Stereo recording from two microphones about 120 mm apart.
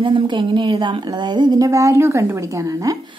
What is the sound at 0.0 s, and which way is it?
A woman's voice, 40° right (ahead or behind).